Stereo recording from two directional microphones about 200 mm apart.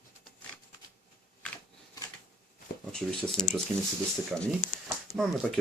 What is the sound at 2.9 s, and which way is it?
Speech, 5° left (ahead or behind).